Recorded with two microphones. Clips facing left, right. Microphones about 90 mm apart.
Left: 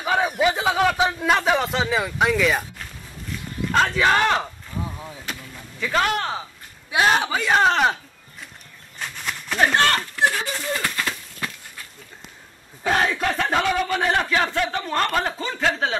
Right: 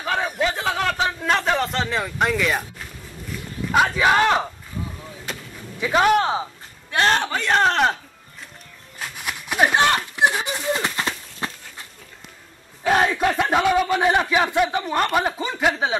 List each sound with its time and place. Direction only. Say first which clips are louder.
0.0 s a sound: left 3 dB; 10° left (ahead or behind)
3.7 s speech: right 1 dB; 10° right (ahead or behind)
5.8 s speech: right 5 dB; 15° right (ahead or behind)
6.9 s a man's voice: left 1 dB; 5° left (ahead or behind)
8.9 s a sound: even; 5° right (ahead or behind); by 11.8 s 25° right (ahead or behind)
12.8 s speech: right 3 dB; 10° right (ahead or behind)